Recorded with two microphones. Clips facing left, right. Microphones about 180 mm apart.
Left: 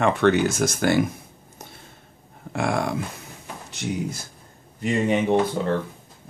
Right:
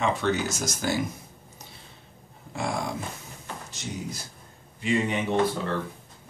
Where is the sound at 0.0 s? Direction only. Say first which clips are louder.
Left 7 dB; 60° left (ahead or behind).